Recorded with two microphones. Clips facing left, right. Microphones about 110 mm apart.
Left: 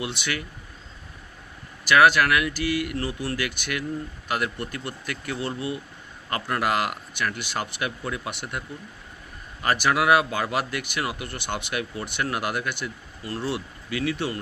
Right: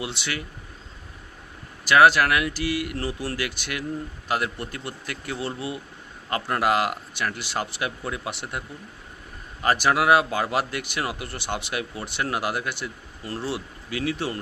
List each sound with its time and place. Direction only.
0.0 s speech: 30° right (ahead or behind)
1.8 s speech: 30° right (ahead or behind)
9.6 s speech: 30° right (ahead or behind)